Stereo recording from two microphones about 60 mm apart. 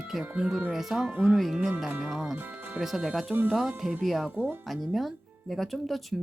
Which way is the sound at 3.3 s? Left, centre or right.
Right.